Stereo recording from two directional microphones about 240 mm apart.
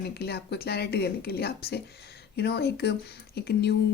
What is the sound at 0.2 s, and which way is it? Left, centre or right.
Speech, left.